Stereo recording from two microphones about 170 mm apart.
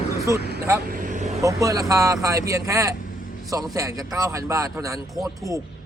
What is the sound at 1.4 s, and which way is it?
A man's voice, 20° right (ahead or behind).